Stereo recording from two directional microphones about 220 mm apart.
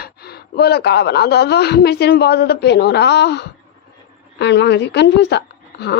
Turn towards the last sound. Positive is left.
turn(degrees=50)  # may be behind; listen again after turning